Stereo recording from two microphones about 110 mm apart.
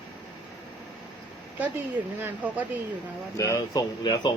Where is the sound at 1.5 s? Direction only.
15° right (ahead or behind).